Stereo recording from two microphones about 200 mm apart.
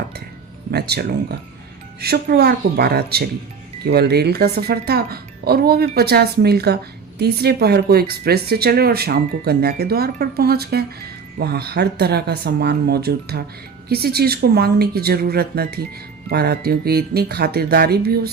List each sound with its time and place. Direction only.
0.7 s speech: 55° right (ahead or behind)